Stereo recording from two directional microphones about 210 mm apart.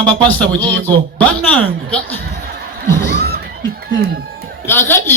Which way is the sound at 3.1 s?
50° right (ahead or behind).